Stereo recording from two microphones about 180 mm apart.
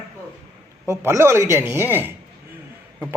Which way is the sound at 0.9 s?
15° right (ahead or behind).